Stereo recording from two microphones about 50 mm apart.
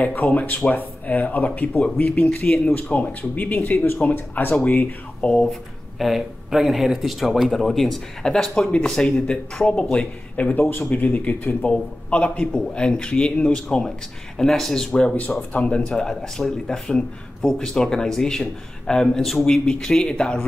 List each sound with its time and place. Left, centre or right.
0.0 s speech: left
5.2 s speech: centre
5.5 s speech: centre; by 10.5 s left
10.5 s speech: left
10.9 s speech: left; by 15.1 s centre
15.5 s speech: left
15.9 s speech: centre
19.4 s speech: centre